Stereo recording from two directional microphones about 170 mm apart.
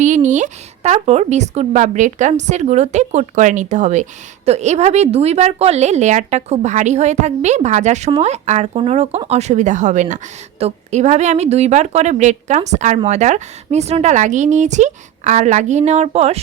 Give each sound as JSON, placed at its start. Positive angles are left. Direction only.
{"t": 0.0, "sound": "speech", "side_deg": -45}